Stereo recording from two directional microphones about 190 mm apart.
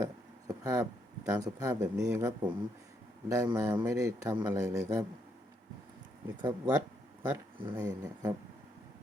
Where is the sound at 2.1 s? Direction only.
15° right (ahead or behind).